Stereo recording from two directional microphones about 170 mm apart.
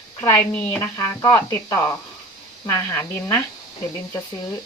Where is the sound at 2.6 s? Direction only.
15° left (ahead or behind).